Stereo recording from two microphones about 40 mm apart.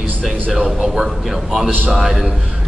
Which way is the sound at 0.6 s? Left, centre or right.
Centre.